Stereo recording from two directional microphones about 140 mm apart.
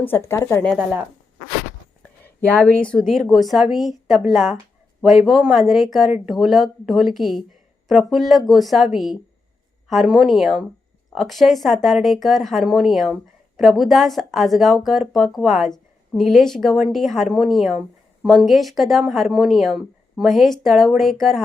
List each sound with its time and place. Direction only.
0.0 s speech: 15° left (ahead or behind)
0.8 s a woman's voice: 15° right (ahead or behind)
2.2 s a woman's voice: 10° left (ahead or behind)